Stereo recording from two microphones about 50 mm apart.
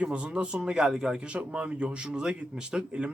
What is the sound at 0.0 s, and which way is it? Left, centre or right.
Speech, right.